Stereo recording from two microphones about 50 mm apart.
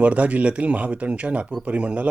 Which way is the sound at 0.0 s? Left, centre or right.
Right.